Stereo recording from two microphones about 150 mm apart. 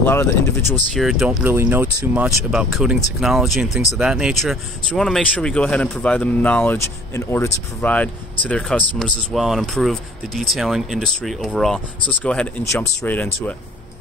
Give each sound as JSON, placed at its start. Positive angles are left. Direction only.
{"t": 0.0, "sound": "speech", "side_deg": 15}
{"t": 0.9, "sound": "speech", "side_deg": 0}
{"t": 1.4, "sound": "speech", "side_deg": -15}
{"t": 2.2, "sound": "speech", "side_deg": -5}